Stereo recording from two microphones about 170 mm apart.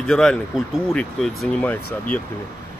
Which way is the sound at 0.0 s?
5° left (ahead or behind).